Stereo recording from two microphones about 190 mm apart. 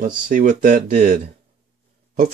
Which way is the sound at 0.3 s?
45° right (ahead or behind).